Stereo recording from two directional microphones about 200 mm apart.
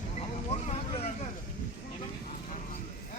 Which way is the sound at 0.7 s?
30° left (ahead or behind).